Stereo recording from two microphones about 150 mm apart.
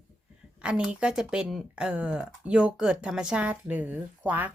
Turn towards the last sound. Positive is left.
turn(degrees=-10)  # may be behind; listen again after turning